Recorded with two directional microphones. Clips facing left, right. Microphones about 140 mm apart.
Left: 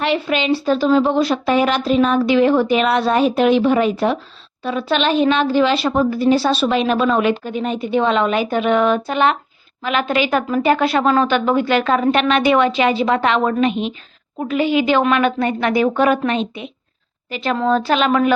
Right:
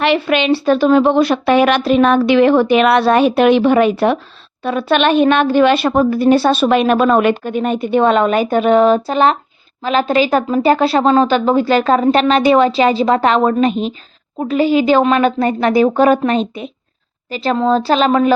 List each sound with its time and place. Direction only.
0.0 s a woman's voice: 70° right (ahead or behind); by 18.3 s 35° right (ahead or behind)